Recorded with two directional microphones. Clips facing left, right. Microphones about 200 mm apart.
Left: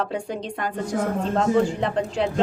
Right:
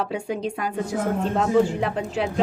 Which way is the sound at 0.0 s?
5° right (ahead or behind).